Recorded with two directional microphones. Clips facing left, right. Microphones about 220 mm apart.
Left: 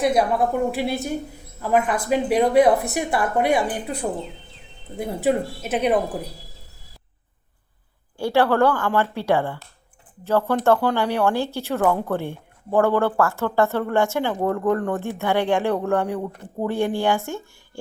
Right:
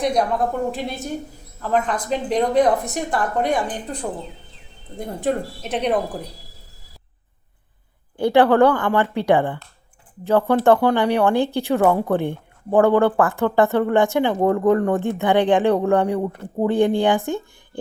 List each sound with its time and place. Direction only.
0.0 s a woman's voice: 5° left (ahead or behind)
8.2 s speech: 15° right (ahead or behind)